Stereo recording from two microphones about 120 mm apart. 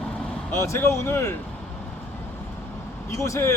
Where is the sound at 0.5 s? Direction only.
25° left (ahead or behind).